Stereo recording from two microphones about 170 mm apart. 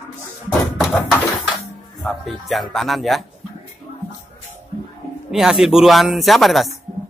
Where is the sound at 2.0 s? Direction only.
Centre (ahead or behind).